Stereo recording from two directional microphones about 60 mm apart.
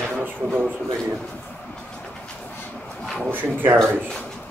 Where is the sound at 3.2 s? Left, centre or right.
Right.